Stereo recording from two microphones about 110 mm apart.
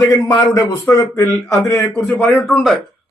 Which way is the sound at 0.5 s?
30° left (ahead or behind).